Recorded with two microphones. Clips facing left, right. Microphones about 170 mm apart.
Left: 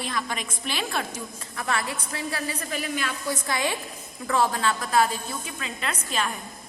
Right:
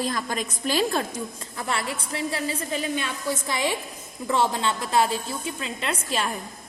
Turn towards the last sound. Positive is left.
turn(degrees=-30)  # may be behind; listen again after turning